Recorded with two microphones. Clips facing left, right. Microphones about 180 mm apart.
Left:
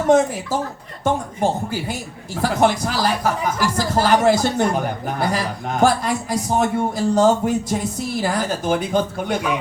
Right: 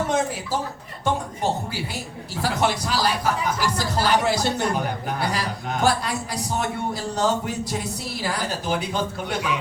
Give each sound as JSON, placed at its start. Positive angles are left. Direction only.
{"t": 1.0, "sound": "a man's voice", "side_deg": 50}